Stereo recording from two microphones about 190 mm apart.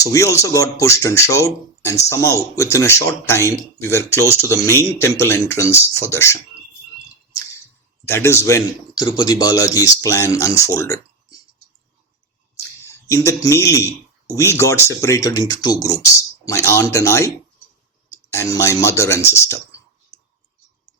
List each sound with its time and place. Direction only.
0.0 s speech: 15° left (ahead or behind)
8.0 s speech: 15° left (ahead or behind)
12.8 s speech: 15° left (ahead or behind)
18.1 s clicking: 15° left (ahead or behind)
18.8 s speech: 15° left (ahead or behind)